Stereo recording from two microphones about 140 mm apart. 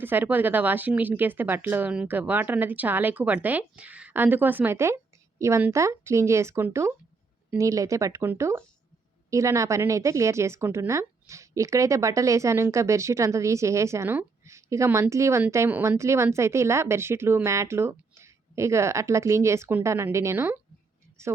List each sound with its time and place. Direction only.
0.0 s speech: 15° right (ahead or behind)